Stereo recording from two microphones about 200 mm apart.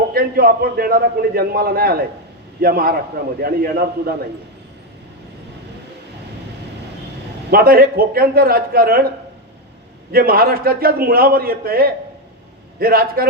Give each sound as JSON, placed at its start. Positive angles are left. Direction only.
{"t": 0.1, "sound": "a man's voice", "side_deg": -50}
{"t": 7.5, "sound": "a man's voice", "side_deg": -45}
{"t": 10.1, "sound": "a man's voice", "side_deg": -45}